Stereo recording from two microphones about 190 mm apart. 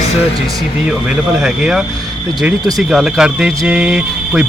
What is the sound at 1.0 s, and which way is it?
Speech, 5° right (ahead or behind).